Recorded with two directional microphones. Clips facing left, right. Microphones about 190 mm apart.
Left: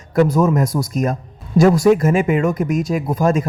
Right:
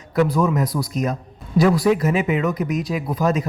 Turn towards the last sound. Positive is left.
turn(degrees=45)  # may be behind; listen again after turning